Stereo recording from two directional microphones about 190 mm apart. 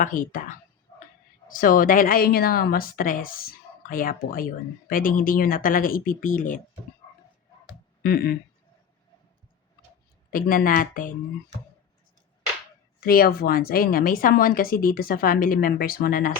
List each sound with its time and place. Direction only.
0.0 s a woman's voice: 45° left (ahead or behind)
8.0 s a woman's voice: 55° left (ahead or behind)
10.3 s a woman's voice: 50° left (ahead or behind)
13.0 s a woman's voice: 50° left (ahead or behind)